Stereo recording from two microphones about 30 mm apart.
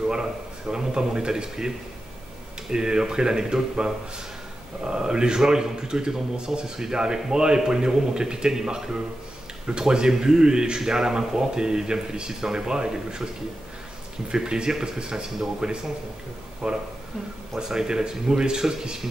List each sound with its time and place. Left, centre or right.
0.1 s speech: right
2.7 s speech: right
14.3 s speech: right